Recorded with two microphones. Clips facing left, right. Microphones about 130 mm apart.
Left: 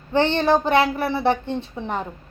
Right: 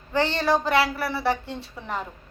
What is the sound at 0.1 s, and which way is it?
A woman's voice, 20° left (ahead or behind).